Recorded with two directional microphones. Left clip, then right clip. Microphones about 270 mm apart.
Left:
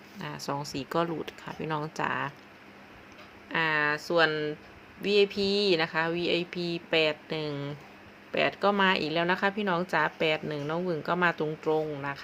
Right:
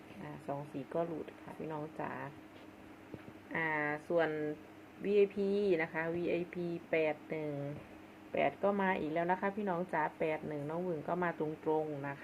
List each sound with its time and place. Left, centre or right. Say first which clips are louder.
0.5 s speech: left 8 dB; left
3.5 s speech: left 9 dB; left